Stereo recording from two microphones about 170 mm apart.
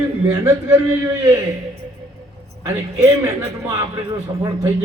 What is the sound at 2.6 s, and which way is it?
Speech, 15° right (ahead or behind).